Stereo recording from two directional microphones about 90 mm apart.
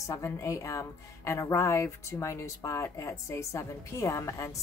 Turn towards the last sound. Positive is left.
turn(degrees=35)  # may be behind; listen again after turning